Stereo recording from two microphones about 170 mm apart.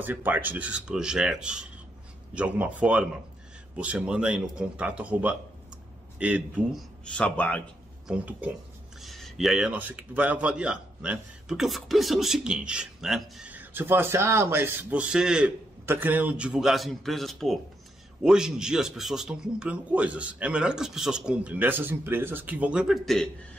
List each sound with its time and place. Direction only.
0.0 s a man's voice: 10° right (ahead or behind)
7.2 s a man's voice: 5° left (ahead or behind)
8.1 s a man's voice: 10° right (ahead or behind)